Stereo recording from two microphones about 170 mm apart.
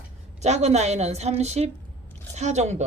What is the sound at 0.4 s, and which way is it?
A woman's voice, 40° right (ahead or behind).